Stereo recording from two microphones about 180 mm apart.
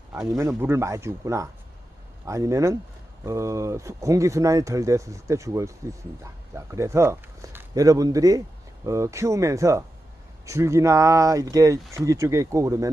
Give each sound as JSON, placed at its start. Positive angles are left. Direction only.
{"t": 0.1, "sound": "speech", "side_deg": -15}